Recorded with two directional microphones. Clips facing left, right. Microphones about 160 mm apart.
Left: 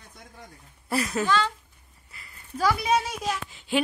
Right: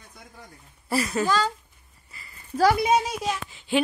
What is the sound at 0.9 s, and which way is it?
Speech, centre (ahead or behind).